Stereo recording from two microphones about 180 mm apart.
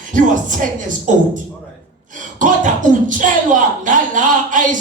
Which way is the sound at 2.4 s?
45° right (ahead or behind).